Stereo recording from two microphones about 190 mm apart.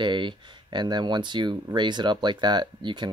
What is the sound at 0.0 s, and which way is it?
Speech, 25° right (ahead or behind).